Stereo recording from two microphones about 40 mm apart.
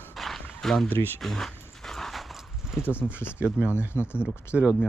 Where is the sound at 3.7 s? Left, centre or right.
Left.